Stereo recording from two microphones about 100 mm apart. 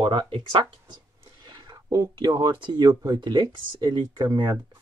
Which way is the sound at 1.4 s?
45° right (ahead or behind).